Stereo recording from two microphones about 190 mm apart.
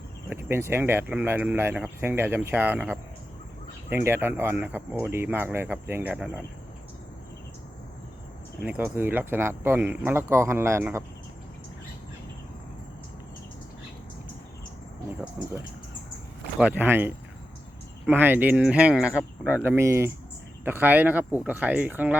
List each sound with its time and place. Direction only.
0.3 s speech: 10° right (ahead or behind)
8.6 s speech: 10° right (ahead or behind)
16.6 s speech: 10° right (ahead or behind)